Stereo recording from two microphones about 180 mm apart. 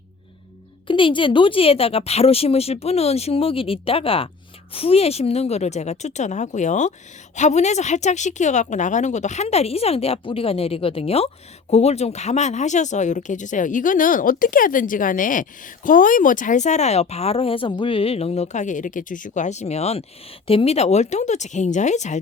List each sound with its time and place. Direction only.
0.9 s a woman's voice: 30° left (ahead or behind)